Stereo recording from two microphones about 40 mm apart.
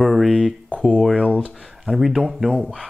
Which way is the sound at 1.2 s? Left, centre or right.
Right.